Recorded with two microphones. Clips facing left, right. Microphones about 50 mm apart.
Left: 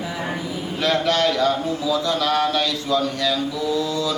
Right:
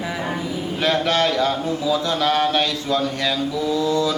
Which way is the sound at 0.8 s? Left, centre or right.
Right.